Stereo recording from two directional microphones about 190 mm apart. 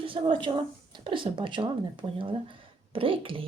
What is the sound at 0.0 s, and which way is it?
A woman's voice, 25° right (ahead or behind).